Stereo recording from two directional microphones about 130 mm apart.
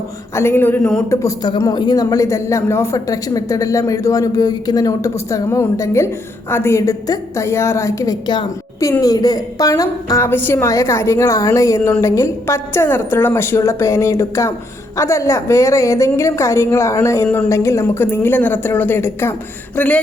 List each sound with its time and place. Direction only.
0.3 s speech: 20° left (ahead or behind)
1.1 s speech: 25° left (ahead or behind)
17.2 s speech: 5° left (ahead or behind)
17.5 s speech: 20° left (ahead or behind)